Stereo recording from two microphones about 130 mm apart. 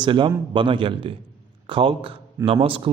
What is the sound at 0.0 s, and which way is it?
A man's voice, 40° right (ahead or behind).